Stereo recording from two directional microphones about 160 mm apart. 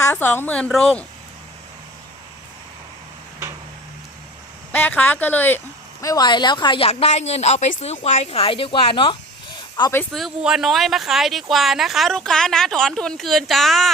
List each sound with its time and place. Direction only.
0.0 s a woman's voice: 15° left (ahead or behind)
4.7 s speech: 10° left (ahead or behind); by 9.9 s 25° left (ahead or behind)
10.1 s speech: centre (ahead or behind)